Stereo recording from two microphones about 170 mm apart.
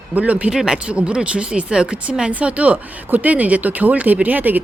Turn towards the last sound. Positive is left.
turn(degrees=-10)  # may be behind; listen again after turning